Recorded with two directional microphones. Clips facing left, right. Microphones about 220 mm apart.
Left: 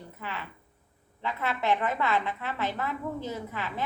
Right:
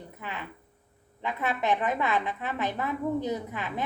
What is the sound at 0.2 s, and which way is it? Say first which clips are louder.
A woman's voice: even; 15° right (ahead or behind).